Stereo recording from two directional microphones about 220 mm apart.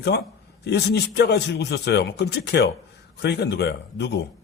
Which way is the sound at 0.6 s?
50° left (ahead or behind).